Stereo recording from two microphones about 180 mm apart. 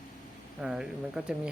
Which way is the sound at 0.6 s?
5° right (ahead or behind).